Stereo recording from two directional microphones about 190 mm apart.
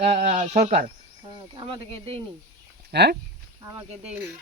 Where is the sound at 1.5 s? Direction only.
30° right (ahead or behind).